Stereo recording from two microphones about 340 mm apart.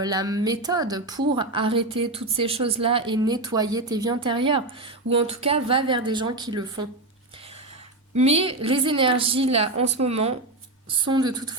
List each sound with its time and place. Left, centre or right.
0.0 s a woman's voice: centre
8.1 s a woman's voice: centre